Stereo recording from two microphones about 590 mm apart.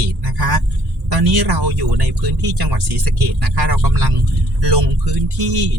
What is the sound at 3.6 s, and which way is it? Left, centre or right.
Speech, right.